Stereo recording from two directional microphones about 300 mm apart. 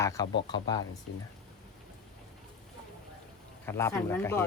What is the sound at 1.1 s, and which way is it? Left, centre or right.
Speech, left.